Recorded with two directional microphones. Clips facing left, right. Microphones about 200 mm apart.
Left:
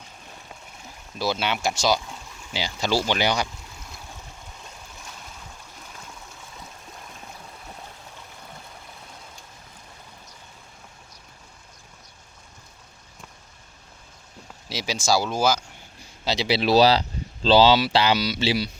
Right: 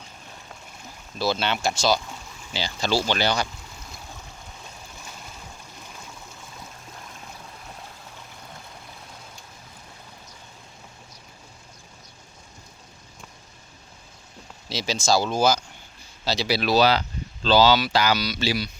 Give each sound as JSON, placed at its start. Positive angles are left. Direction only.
{"t": 1.2, "sound": "speech", "side_deg": 10}
{"t": 14.7, "sound": "speech", "side_deg": 10}
{"t": 16.2, "sound": "speech", "side_deg": 20}